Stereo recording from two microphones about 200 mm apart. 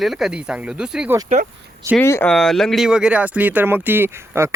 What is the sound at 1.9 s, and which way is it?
Speech, 10° left (ahead or behind).